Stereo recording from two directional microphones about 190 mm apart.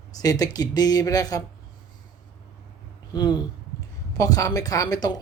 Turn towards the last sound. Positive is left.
turn(degrees=20)  # may be behind; listen again after turning